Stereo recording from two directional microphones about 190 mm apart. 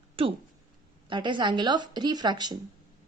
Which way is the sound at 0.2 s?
30° right (ahead or behind).